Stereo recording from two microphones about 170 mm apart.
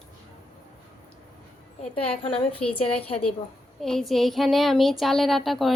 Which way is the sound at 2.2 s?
30° left (ahead or behind).